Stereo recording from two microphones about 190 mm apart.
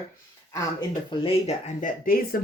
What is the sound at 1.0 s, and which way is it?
Speech, 30° left (ahead or behind).